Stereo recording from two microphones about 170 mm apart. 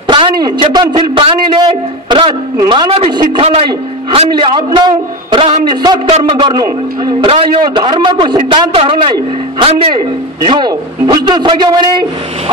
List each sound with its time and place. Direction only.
0.0 s a sound: 30° right (ahead or behind)
0.6 s a man's voice: 30° right (ahead or behind)
7.0 s a man's voice: 30° right (ahead or behind)